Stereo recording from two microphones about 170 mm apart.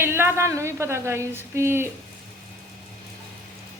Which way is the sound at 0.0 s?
15° right (ahead or behind).